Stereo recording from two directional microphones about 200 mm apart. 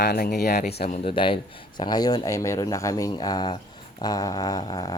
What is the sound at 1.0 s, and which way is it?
Speech, 25° left (ahead or behind).